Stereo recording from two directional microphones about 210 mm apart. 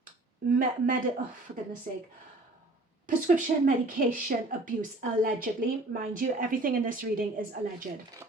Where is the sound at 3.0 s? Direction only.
40° right (ahead or behind).